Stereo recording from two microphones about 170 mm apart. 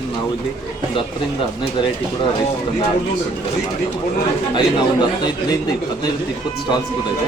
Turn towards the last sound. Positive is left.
turn(degrees=25)  # may be behind; listen again after turning